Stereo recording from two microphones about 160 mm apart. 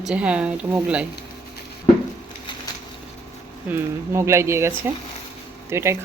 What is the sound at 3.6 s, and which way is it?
Speech, 15° right (ahead or behind).